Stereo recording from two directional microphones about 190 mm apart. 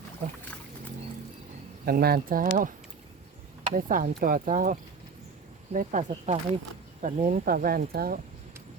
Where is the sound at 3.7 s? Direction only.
50° right (ahead or behind).